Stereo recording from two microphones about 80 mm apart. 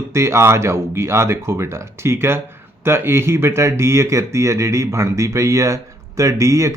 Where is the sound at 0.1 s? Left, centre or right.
Right.